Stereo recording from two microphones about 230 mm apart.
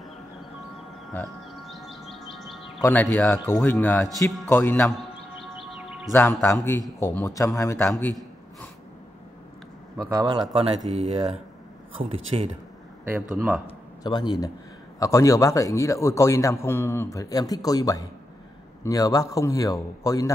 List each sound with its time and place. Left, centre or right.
1.5 s music: centre
2.8 s a man's voice: centre
5.4 s music: centre
6.4 s a man's voice: centre
9.9 s speech: centre
10.9 s speech: right
13.0 s speech: centre
13.7 s a man's voice: centre